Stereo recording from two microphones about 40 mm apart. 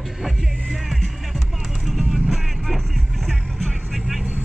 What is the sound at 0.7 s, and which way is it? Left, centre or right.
Music, centre.